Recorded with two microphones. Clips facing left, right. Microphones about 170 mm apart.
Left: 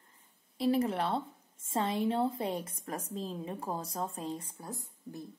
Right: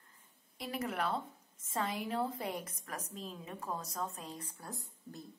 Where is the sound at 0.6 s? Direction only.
30° left (ahead or behind).